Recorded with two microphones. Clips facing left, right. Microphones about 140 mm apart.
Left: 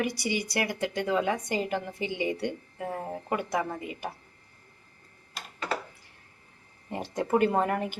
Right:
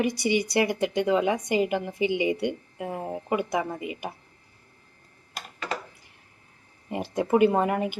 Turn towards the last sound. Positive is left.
turn(degrees=-10)  # may be behind; listen again after turning